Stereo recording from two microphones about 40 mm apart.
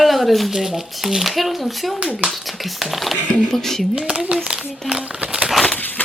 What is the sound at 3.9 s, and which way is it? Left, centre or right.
Speech, right.